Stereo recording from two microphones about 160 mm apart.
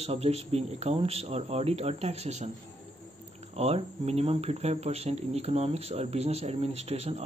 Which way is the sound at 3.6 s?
40° right (ahead or behind).